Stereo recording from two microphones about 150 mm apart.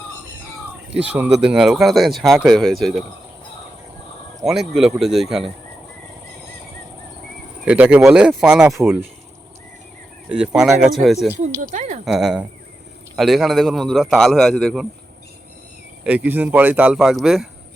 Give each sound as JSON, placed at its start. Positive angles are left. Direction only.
{"t": 1.0, "sound": "speech", "side_deg": -10}
{"t": 4.4, "sound": "speech", "side_deg": -5}
{"t": 7.6, "sound": "speech", "side_deg": -10}
{"t": 10.2, "sound": "speech", "side_deg": -5}
{"t": 11.7, "sound": "speech", "side_deg": -55}
{"t": 12.0, "sound": "speech", "side_deg": -5}
{"t": 16.0, "sound": "speech", "side_deg": -10}